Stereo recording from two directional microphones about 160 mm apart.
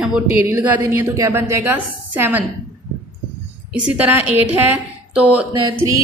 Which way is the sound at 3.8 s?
10° right (ahead or behind).